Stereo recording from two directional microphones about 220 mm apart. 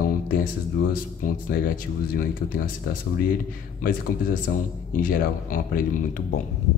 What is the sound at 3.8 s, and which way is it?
Speech, 40° left (ahead or behind).